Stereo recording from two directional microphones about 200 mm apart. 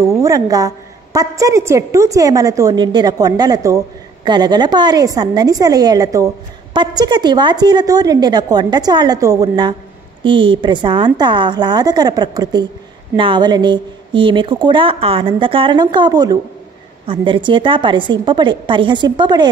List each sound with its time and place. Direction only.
0.0 s a woman's voice: 15° right (ahead or behind)